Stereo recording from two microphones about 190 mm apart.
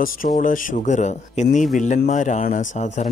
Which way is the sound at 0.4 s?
40° left (ahead or behind).